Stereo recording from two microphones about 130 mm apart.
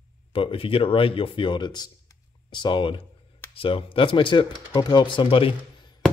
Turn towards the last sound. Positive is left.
turn(degrees=45)  # may be behind; listen again after turning